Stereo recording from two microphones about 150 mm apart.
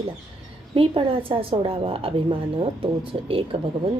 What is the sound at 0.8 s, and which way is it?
A woman's voice, 35° right (ahead or behind).